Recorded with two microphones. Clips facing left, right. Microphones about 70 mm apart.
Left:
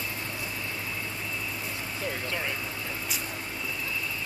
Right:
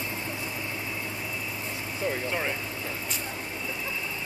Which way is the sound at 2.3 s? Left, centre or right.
Centre.